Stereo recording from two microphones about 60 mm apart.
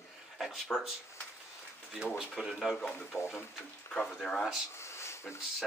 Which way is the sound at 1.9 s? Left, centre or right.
Centre.